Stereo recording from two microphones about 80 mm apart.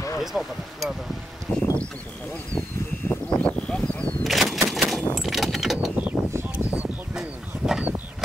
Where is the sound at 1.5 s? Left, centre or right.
Left.